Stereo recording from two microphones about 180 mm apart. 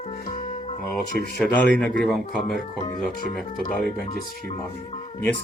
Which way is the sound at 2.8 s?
50° left (ahead or behind).